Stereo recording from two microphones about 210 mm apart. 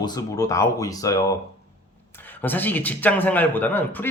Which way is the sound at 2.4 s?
10° left (ahead or behind).